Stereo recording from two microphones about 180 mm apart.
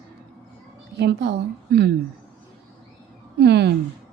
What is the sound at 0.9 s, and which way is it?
A woman's voice, 70° right (ahead or behind).